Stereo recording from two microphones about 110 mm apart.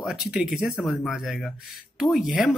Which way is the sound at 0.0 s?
5° right (ahead or behind).